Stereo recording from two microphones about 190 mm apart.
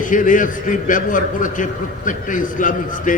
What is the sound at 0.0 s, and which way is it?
A man's voice, 45° left (ahead or behind).